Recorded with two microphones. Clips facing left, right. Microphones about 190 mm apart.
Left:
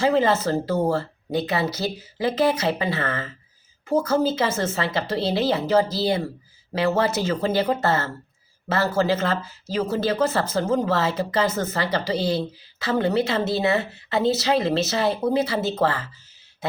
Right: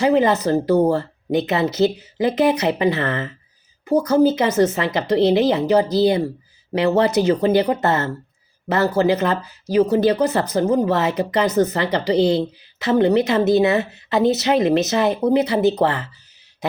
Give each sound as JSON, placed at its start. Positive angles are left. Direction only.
{"t": 0.0, "sound": "speech", "side_deg": -15}